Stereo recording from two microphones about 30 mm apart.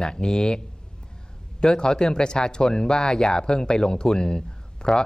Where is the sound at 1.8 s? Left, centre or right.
Left.